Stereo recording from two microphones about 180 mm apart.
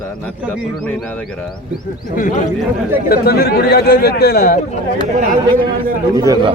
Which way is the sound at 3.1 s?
60° left (ahead or behind).